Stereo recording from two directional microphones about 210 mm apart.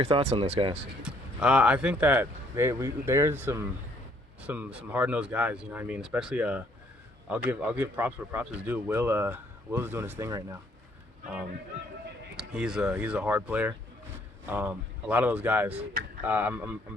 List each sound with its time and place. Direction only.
0.0 s speech: 25° right (ahead or behind)
1.0 s speech: 5° right (ahead or behind)
12.4 s speech: 5° right (ahead or behind)